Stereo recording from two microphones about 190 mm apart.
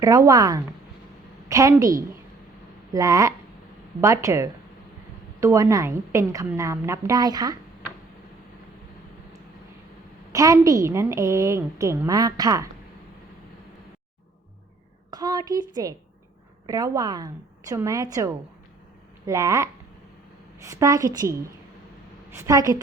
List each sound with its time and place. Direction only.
0.0 s a woman's voice: 15° right (ahead or behind)
10.3 s a woman's voice: 15° right (ahead or behind)
15.1 s a woman's voice: 20° right (ahead or behind)